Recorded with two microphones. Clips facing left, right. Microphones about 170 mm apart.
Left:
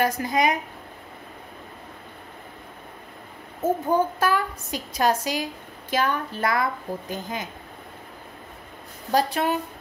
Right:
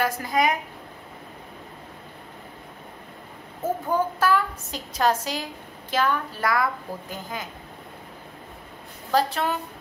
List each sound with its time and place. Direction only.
0.0 s a woman's voice: 20° left (ahead or behind)
3.6 s a child's voice: 20° left (ahead or behind)
9.1 s a child's voice: 15° left (ahead or behind)